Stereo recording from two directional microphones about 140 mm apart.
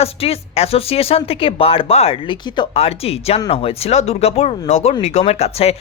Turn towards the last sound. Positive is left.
turn(degrees=45)  # may be behind; listen again after turning